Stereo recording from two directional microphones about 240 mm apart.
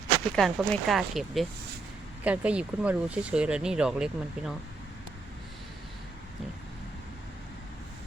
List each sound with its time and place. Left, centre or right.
0.3 s speech: centre